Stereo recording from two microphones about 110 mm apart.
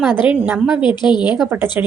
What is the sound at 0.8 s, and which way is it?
Speech, 45° left (ahead or behind).